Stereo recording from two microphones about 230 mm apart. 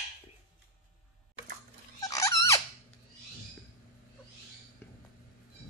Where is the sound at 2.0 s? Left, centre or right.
Centre.